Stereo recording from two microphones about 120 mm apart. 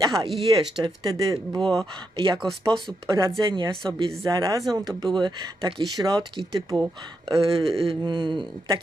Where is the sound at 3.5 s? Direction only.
45° right (ahead or behind).